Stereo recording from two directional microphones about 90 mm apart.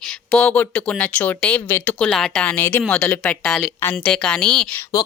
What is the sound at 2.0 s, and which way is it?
Speech, 5° left (ahead or behind).